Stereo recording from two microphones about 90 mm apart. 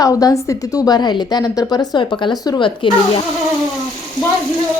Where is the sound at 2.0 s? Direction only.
60° left (ahead or behind).